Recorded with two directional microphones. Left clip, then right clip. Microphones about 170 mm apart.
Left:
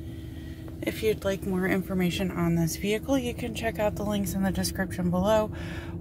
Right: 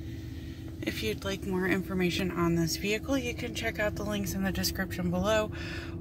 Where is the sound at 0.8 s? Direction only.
30° left (ahead or behind); by 4.0 s 10° left (ahead or behind).